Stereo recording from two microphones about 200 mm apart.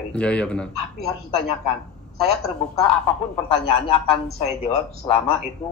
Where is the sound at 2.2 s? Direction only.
Centre (ahead or behind).